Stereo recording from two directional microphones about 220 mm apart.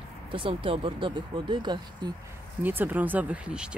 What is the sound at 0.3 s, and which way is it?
Speech, 25° right (ahead or behind).